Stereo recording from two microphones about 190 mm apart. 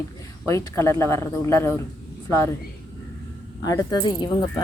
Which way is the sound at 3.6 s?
20° left (ahead or behind).